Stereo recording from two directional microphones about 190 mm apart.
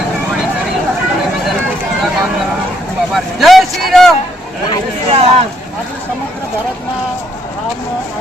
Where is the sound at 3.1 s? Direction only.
Centre (ahead or behind).